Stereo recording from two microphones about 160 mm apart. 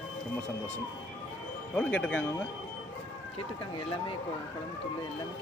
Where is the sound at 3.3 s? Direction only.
35° left (ahead or behind).